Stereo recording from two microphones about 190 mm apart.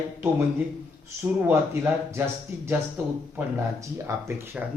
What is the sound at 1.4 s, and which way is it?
Speech, 15° right (ahead or behind).